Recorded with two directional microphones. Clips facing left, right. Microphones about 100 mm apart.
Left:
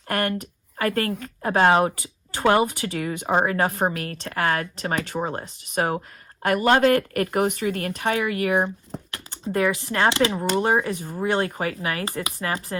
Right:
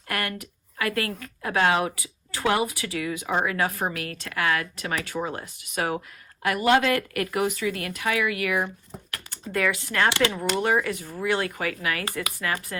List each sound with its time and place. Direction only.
0.1 s speech: 35° left (ahead or behind)